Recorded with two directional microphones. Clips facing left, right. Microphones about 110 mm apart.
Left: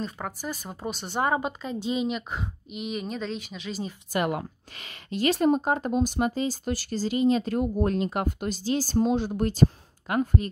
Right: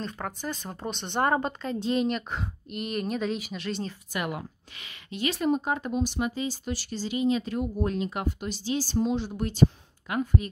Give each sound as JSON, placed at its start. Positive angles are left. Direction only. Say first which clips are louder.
{"t": 0.0, "sound": "speech", "louder": "left 1 dB", "side_deg": 5}
{"t": 4.3, "sound": "speech", "louder": "left 5 dB", "side_deg": 45}